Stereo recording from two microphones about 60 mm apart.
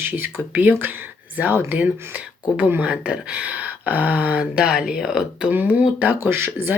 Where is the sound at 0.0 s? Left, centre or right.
Right; by 5.2 s centre.